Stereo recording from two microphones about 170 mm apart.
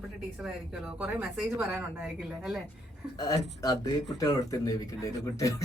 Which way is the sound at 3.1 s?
20° left (ahead or behind).